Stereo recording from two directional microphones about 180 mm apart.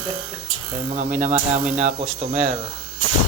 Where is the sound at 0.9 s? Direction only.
45° right (ahead or behind).